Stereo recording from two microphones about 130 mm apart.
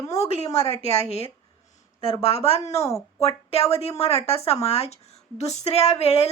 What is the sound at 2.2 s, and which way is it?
A woman's voice, 50° left (ahead or behind).